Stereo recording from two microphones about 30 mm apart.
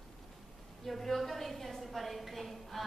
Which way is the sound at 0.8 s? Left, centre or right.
Centre.